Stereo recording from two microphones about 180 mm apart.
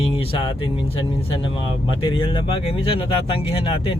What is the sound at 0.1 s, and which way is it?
Speech, 30° left (ahead or behind).